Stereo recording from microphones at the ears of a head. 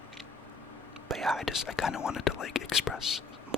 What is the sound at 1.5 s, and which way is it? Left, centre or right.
Speech, left.